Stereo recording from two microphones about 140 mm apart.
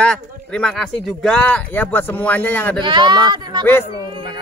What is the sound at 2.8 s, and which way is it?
Speech, 35° right (ahead or behind).